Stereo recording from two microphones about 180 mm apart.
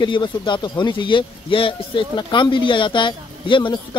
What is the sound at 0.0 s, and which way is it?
Speech, 25° left (ahead or behind).